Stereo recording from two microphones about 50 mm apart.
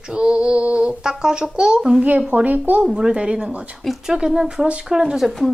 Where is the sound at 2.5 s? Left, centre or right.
Right.